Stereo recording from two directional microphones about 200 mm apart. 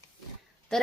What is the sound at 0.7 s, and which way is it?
Speech, 5° left (ahead or behind).